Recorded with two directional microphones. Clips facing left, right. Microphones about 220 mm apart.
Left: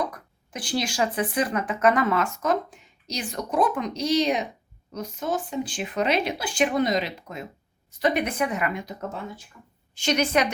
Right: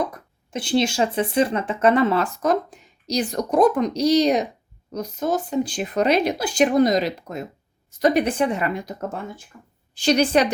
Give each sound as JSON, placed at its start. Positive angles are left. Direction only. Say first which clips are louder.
{"t": 0.0, "sound": "speech", "louder": "right 3 dB", "side_deg": -25}
{"t": 9.9, "sound": "speech", "louder": "right 5 dB", "side_deg": -35}